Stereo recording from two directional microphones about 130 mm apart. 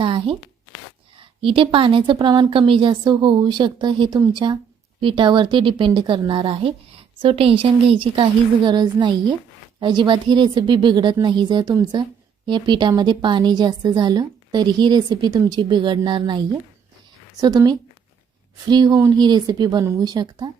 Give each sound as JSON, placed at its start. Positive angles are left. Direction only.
{"t": 0.0, "sound": "a sound", "side_deg": -40}
{"t": 1.4, "sound": "a woman's voice", "side_deg": -40}
{"t": 17.4, "sound": "a woman's voice", "side_deg": -30}